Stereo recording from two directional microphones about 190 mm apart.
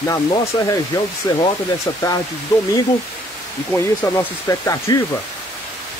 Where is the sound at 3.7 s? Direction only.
15° left (ahead or behind).